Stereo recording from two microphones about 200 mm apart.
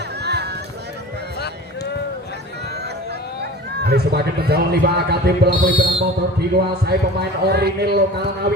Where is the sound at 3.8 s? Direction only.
55° right (ahead or behind).